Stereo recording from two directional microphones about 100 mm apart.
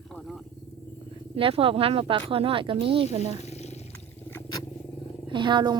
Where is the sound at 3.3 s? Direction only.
90° left.